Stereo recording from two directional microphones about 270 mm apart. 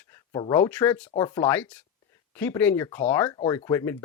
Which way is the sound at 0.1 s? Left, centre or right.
Centre.